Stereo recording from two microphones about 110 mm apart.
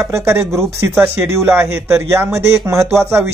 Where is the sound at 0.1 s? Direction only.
25° right (ahead or behind).